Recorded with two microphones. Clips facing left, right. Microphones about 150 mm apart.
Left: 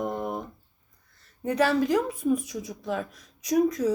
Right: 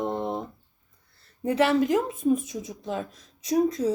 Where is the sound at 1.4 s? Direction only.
25° right (ahead or behind).